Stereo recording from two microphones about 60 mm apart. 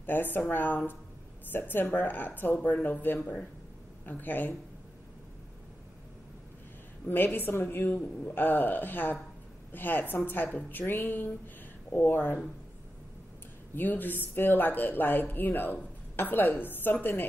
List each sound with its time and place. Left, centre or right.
0.0 s speech: left
7.3 s a woman's voice: left
13.7 s speech: left